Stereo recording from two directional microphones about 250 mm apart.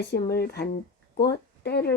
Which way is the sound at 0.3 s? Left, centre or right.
Left.